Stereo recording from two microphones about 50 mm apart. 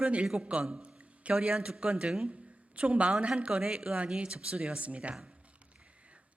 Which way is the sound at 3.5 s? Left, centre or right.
Centre.